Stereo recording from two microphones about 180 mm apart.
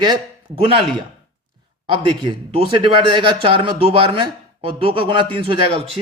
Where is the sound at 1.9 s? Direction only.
30° right (ahead or behind).